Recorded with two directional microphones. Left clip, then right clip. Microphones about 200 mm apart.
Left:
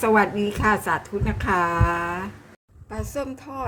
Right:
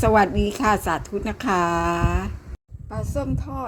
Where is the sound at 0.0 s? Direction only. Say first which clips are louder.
Right 1 dB; 30° right (ahead or behind).